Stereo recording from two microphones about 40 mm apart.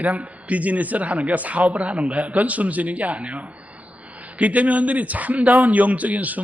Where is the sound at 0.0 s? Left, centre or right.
Right.